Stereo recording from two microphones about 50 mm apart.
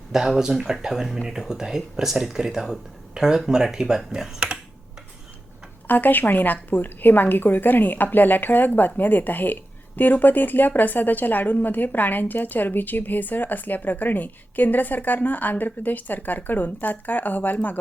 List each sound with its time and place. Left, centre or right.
0.1 s speech: centre
5.9 s a woman's voice: left